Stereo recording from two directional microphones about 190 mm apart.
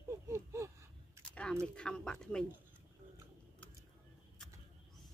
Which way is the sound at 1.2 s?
5° left (ahead or behind).